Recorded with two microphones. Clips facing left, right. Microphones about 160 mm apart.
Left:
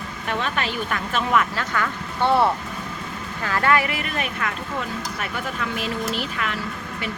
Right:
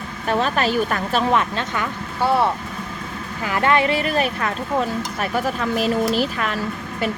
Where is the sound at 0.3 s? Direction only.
35° right (ahead or behind).